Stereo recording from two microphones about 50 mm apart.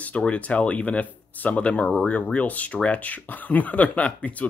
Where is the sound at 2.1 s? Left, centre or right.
Left.